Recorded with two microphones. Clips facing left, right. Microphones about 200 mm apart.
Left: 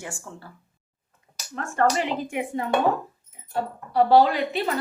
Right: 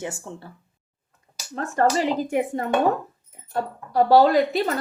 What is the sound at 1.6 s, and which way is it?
Speech, 35° right (ahead or behind).